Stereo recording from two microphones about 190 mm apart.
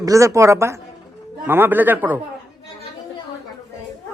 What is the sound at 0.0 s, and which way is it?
A man's voice, 15° right (ahead or behind).